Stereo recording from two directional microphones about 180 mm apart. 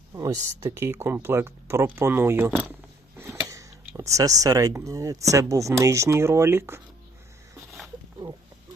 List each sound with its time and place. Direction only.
0.1 s speech: 15° right (ahead or behind)